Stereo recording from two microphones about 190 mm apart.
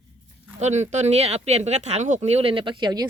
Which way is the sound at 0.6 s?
35° right (ahead or behind).